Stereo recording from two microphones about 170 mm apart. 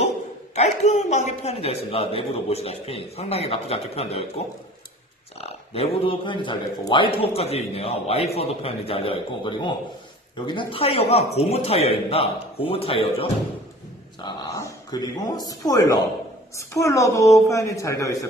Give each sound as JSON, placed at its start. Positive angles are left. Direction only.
{"t": 0.6, "sound": "a man's voice", "side_deg": 45}
{"t": 6.0, "sound": "a man's voice", "side_deg": 30}
{"t": 14.2, "sound": "a woman's voice", "side_deg": 25}